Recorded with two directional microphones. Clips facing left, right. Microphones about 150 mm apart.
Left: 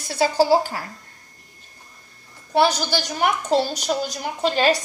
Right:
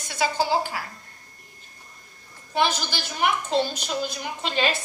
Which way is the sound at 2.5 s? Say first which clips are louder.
Left 6 dB; 40° left (ahead or behind).